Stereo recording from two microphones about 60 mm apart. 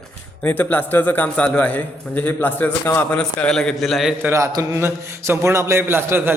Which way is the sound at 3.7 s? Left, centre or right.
Centre.